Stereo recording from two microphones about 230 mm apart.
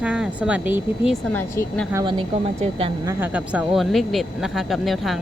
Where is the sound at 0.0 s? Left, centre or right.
Centre.